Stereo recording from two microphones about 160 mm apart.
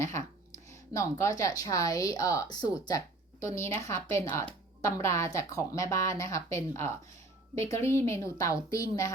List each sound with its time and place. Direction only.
0.7 s a woman's voice: 20° left (ahead or behind)